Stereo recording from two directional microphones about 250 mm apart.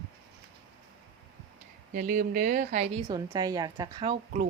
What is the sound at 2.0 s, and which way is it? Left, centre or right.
A woman's voice, right.